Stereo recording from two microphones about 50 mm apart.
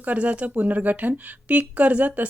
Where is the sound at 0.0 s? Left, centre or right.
Right.